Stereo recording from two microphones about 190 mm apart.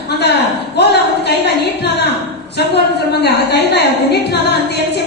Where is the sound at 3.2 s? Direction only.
60° left (ahead or behind).